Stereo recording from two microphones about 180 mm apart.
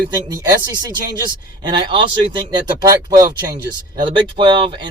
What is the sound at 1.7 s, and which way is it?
Speech, 25° right (ahead or behind).